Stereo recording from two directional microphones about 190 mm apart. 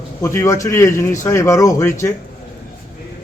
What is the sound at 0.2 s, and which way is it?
A man's voice, 15° left (ahead or behind).